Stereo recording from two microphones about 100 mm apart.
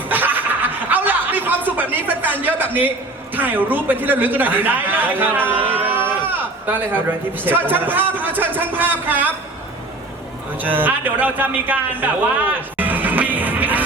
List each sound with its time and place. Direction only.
0.1 s chuckle: 20° right (ahead or behind)
3.3 s a man's voice: 20° right (ahead or behind)
10.6 s a man's voice: 20° right (ahead or behind)